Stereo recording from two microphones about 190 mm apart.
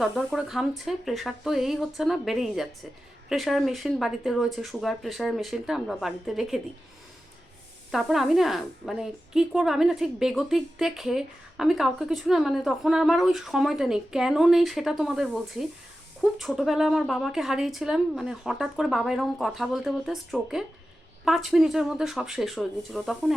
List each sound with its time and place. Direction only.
0.0 s a woman's voice: centre (ahead or behind)
7.9 s a woman's voice: centre (ahead or behind)